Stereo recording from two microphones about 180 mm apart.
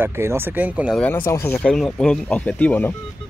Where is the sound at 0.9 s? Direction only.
10° left (ahead or behind).